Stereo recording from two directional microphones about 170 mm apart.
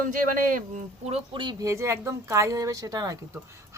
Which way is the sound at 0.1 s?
50° right (ahead or behind).